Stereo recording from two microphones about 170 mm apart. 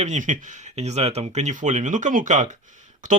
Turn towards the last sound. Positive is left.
turn(degrees=-45)  # may be behind; listen again after turning